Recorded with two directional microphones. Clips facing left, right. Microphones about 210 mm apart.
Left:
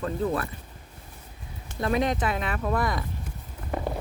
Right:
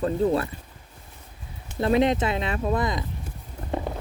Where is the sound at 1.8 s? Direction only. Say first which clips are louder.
Right 4 dB; 25° right (ahead or behind).